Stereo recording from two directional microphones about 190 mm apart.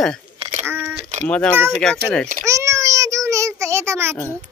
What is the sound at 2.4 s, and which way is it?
Child singing, 15° right (ahead or behind).